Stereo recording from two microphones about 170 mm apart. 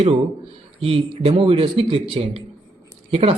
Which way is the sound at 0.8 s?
35° right (ahead or behind).